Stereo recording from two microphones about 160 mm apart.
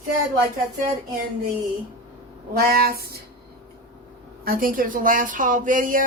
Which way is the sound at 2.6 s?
70° right (ahead or behind).